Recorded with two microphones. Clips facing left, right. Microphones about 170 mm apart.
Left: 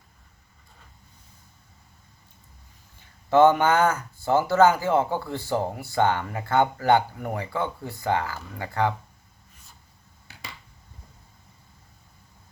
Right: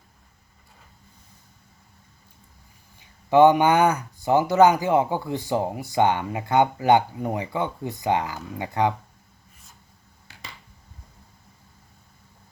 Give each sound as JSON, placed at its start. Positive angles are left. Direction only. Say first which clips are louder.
{"t": 3.2, "sound": "speech", "louder": "right 2 dB", "side_deg": -15}